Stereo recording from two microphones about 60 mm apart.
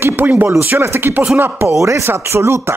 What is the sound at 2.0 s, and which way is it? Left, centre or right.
Speech, right.